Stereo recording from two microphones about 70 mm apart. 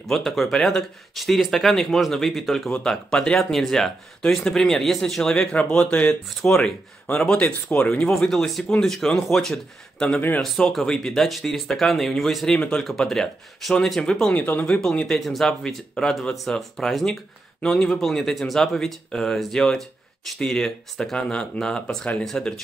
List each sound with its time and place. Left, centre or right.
0.1 s speech: centre
10.4 s speech: centre